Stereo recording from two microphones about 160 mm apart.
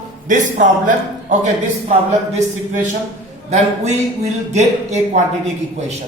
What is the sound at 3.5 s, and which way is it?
A man's voice, 45° right (ahead or behind).